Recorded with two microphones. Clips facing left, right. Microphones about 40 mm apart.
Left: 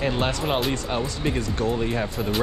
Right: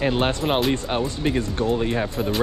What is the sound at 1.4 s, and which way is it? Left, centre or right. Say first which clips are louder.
Speech: right 2 dB; right.